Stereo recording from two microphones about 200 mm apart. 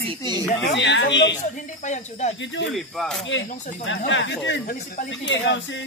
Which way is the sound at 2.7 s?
Centre (ahead or behind).